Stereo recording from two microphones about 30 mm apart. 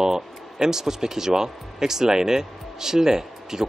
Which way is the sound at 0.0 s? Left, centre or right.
Right.